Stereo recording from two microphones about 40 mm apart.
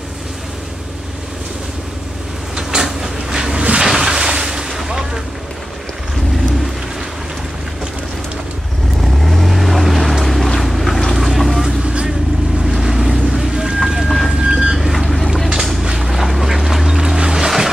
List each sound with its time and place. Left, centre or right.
2.5 s train: centre
3.5 s a sound: right
3.8 s a sound: centre
9.2 s vehicle: centre
10.2 s boat: centre
14.0 s rain: centre
14.4 s vehicle: centre
14.8 s boat: centre
15.8 s a sound: centre
16.1 s duck: centre
17.2 s music: centre